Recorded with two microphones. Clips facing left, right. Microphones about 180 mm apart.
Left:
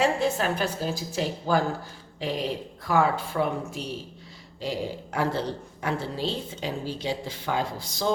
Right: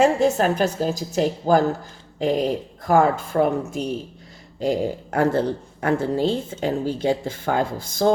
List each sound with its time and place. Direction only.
0.0 s a woman's voice: 45° right (ahead or behind)